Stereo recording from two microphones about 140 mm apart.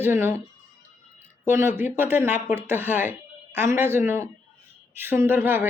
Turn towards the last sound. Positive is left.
turn(degrees=-15)  # may be behind; listen again after turning